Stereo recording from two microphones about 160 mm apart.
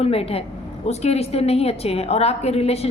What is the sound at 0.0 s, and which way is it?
A woman's voice, 40° left (ahead or behind).